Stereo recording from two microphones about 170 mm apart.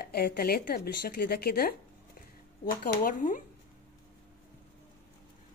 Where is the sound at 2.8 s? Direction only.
55° left (ahead or behind).